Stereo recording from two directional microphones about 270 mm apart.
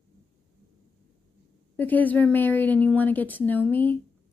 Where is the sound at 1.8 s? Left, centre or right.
Centre.